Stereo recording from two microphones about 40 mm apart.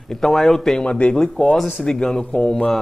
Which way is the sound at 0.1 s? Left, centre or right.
Centre.